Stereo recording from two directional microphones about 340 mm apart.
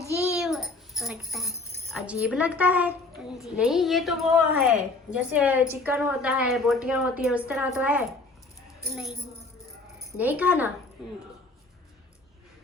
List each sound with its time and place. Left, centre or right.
0.0 s a sound: centre
0.3 s music: centre
3.3 s a woman's voice: centre
10.2 s a woman's voice: centre